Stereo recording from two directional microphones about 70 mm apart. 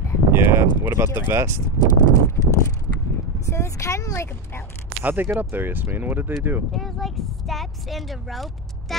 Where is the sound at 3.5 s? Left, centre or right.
Left.